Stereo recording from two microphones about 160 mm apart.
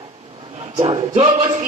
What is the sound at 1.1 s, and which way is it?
Speech, 40° right (ahead or behind).